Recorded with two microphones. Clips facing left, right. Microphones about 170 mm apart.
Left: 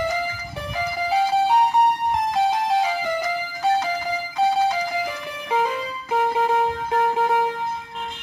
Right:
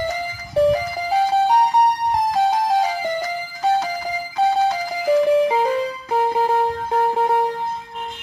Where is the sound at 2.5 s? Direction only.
40° right (ahead or behind).